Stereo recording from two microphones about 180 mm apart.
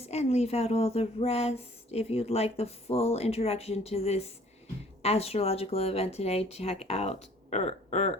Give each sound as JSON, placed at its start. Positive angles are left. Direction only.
{"t": 0.0, "sound": "speech", "side_deg": 35}